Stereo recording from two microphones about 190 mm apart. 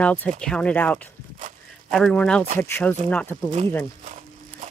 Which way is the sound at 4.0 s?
40° right (ahead or behind).